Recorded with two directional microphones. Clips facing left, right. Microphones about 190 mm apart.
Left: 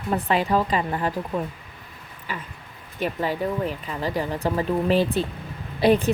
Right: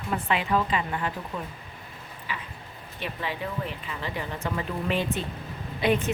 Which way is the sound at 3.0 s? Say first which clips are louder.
Left 8 dB; 40° left (ahead or behind).